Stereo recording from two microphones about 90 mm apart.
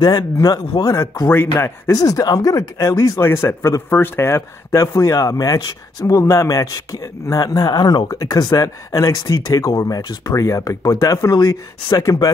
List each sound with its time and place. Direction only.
0.0 s speech: 45° left (ahead or behind)
1.3 s a man's voice: 25° left (ahead or behind)
1.9 s speech: 40° left (ahead or behind)
3.2 s a man's voice: 25° left (ahead or behind)
10.6 s speech: 45° left (ahead or behind)
10.9 s speech: 35° left (ahead or behind)